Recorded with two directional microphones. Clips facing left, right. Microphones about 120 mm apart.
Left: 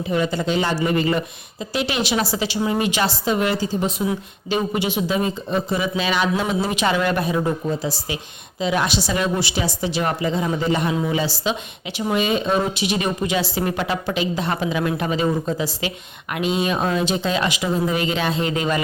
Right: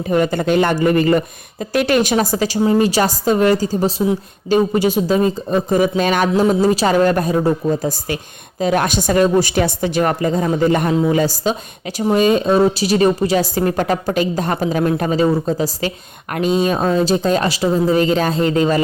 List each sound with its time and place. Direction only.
0.1 s a woman's voice: 50° right (ahead or behind)
6.4 s a woman's voice: 40° right (ahead or behind)